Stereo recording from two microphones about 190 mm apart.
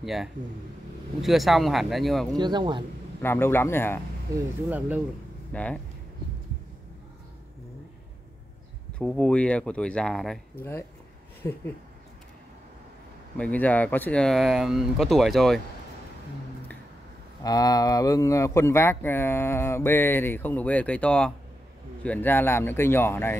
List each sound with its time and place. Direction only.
0.0 s speech: centre (ahead or behind)
2.3 s speech: 20° right (ahead or behind)
3.2 s speech: 10° left (ahead or behind)
4.6 s speech: 10° right (ahead or behind)
5.5 s speech: 5° left (ahead or behind)
8.9 s speech: 5° left (ahead or behind)
10.6 s speech: 10° left (ahead or behind)
13.4 s speech: 10° left (ahead or behind)
17.4 s speech: 20° left (ahead or behind)